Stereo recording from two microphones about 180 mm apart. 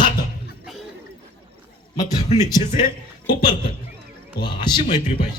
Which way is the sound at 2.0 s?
40° left (ahead or behind).